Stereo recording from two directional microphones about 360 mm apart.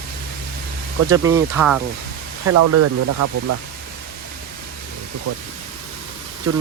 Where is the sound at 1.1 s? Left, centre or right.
Centre.